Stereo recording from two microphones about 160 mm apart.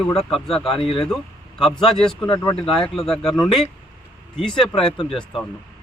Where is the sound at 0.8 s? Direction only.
35° left (ahead or behind).